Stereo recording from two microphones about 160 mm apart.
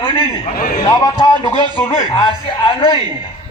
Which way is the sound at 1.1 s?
30° left (ahead or behind).